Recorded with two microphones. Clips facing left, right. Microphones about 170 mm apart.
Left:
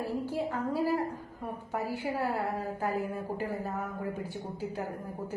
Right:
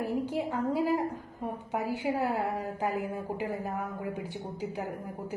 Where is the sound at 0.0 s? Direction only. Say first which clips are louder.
Right 2 dB; 15° right (ahead or behind).